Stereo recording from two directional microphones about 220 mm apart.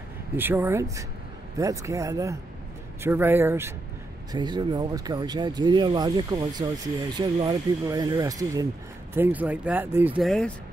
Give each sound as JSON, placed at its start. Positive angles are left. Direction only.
{"t": 0.4, "sound": "speech", "side_deg": -10}
{"t": 10.2, "sound": "speech", "side_deg": 0}